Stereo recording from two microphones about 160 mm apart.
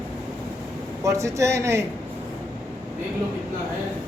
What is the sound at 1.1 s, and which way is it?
Speech, 20° right (ahead or behind).